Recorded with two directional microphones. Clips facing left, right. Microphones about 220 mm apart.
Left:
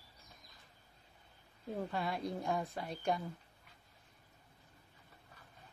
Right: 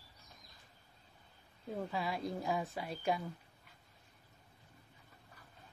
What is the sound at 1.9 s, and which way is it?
A woman's voice, centre (ahead or behind).